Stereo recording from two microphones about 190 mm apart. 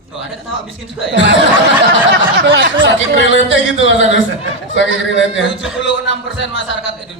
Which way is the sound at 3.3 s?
75° left (ahead or behind).